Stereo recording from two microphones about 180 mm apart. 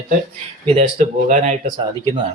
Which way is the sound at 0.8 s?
40° right (ahead or behind).